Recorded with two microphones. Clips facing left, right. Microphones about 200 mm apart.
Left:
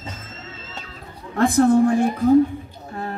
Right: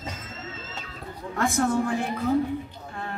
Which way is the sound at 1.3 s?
35° left (ahead or behind).